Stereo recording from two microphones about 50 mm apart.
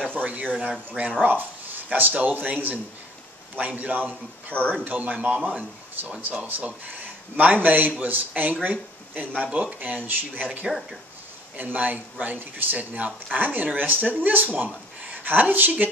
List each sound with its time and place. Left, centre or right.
0.1 s speech: right
1.2 s a sound: right
1.9 s speech: right
6.2 s speech: right
9.4 s speech: right
9.8 s speech: right